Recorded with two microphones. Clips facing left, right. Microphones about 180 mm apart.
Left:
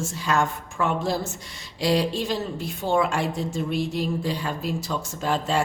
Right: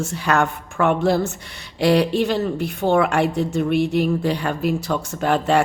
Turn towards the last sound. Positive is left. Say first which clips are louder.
# right 6 dB
turn(degrees=-65)  # may be behind; listen again after turning